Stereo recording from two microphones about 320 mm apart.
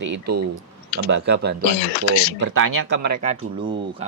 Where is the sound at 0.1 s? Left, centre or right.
Right.